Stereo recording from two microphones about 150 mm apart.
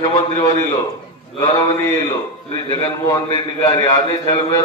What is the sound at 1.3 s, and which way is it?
Speech, 25° left (ahead or behind).